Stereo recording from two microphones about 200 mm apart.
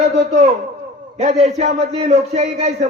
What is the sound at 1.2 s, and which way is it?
Speech, 30° right (ahead or behind).